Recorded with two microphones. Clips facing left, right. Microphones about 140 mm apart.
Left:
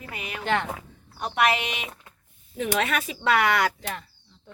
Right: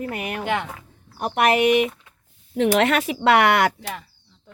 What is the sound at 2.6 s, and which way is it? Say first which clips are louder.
A woman's voice: right 8 dB; 75° right (ahead or behind).